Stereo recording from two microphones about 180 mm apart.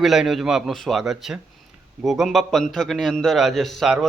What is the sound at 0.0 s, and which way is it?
Speech, centre (ahead or behind).